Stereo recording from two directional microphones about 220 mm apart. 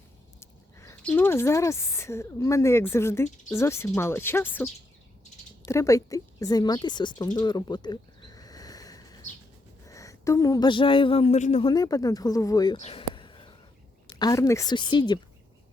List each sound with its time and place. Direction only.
0.3 s speech: 10° left (ahead or behind)
7.3 s a sound: 20° left (ahead or behind)
9.8 s speech: 15° left (ahead or behind); by 11.7 s 30° left (ahead or behind)
11.7 s speech: 15° left (ahead or behind)
12.7 s speech: 30° left (ahead or behind)
13.1 s a sound: 20° left (ahead or behind)
14.2 s speech: 15° left (ahead or behind)